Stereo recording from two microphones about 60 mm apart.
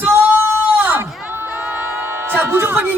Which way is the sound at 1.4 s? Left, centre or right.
Centre.